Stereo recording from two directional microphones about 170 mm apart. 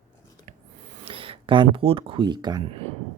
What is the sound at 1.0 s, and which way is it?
Speech, 30° right (ahead or behind).